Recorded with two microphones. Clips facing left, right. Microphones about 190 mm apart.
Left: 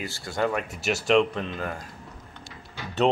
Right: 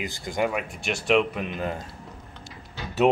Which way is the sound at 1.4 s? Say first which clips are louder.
Right 2 dB; 20° right (ahead or behind).